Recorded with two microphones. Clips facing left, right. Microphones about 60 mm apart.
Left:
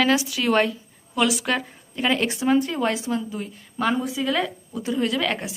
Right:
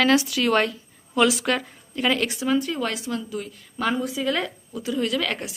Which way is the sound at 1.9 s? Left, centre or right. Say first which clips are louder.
Even; left.